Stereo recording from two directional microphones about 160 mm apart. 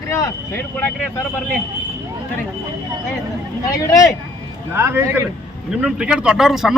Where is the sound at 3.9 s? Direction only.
20° left (ahead or behind).